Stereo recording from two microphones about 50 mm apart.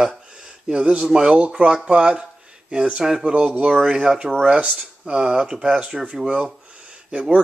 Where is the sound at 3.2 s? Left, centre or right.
Right.